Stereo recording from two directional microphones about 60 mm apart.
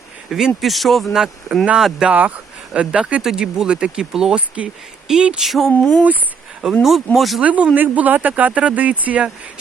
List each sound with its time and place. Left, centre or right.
0.3 s speech: centre
1.1 s speech: centre
2.0 s speech: right
5.4 s speech: centre
5.6 s speech: left
6.8 s speech: centre
7.4 s speech: right